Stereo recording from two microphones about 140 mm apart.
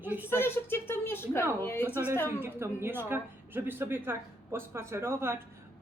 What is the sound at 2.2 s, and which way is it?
A woman's voice, 15° right (ahead or behind).